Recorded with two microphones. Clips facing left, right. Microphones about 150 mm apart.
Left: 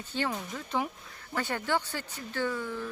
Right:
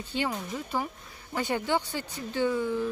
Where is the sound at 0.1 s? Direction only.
10° right (ahead or behind).